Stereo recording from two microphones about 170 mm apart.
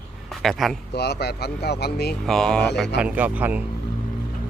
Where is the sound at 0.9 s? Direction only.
75° left (ahead or behind).